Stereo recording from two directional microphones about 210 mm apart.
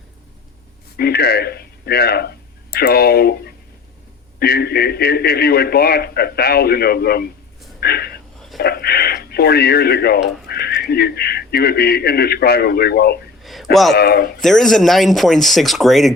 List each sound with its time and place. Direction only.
0.9 s speech: 50° left (ahead or behind)
13.4 s a sound: centre (ahead or behind)
13.9 s speech: 50° left (ahead or behind)
14.4 s speech: centre (ahead or behind)